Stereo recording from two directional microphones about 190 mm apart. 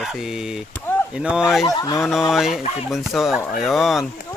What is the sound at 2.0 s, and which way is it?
Speech, centre (ahead or behind).